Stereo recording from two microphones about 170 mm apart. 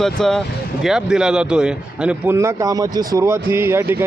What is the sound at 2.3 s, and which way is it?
Speech, 15° right (ahead or behind).